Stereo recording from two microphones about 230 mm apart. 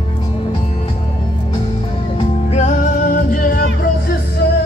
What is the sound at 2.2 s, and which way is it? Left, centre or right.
Music, left.